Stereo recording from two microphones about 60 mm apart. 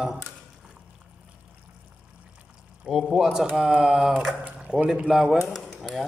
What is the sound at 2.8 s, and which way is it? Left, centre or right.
A man's voice, centre.